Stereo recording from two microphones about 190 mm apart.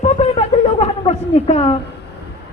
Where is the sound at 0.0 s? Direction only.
35° left (ahead or behind).